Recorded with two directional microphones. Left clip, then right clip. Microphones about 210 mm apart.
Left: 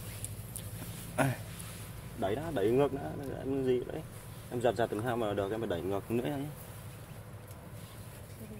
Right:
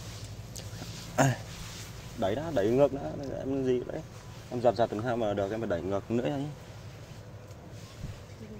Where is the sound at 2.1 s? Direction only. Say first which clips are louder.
Right 4 dB; 25° right (ahead or behind).